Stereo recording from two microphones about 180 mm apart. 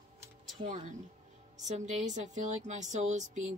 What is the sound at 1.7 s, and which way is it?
A woman's voice, 40° right (ahead or behind).